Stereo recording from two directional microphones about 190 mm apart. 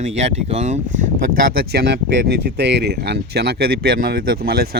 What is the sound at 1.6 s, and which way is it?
Speech, 60° right (ahead or behind).